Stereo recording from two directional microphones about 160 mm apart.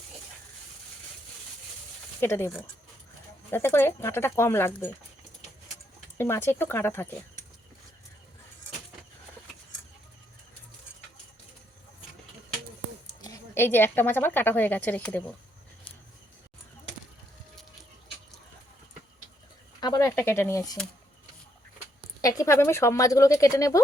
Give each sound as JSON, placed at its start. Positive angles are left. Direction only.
{"t": 2.2, "sound": "a woman's voice", "side_deg": 15}
{"t": 6.1, "sound": "a woman's voice", "side_deg": 15}
{"t": 13.2, "sound": "a woman's voice", "side_deg": 15}
{"t": 19.8, "sound": "speech", "side_deg": 20}
{"t": 22.2, "sound": "speech", "side_deg": 20}